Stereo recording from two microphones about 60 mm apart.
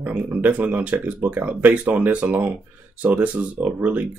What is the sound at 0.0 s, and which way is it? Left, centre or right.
Speech, right.